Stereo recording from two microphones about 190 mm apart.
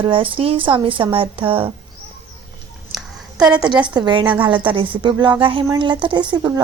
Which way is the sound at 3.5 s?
25° right (ahead or behind).